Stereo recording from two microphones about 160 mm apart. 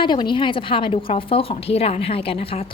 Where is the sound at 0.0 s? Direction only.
30° left (ahead or behind).